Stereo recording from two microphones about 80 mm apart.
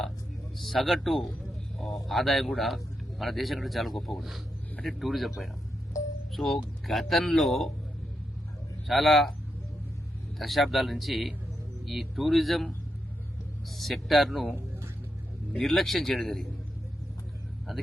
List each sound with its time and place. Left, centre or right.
0.6 s speech: centre
6.3 s speech: centre
8.9 s speech: centre
10.3 s speech: centre
15.5 s speech: centre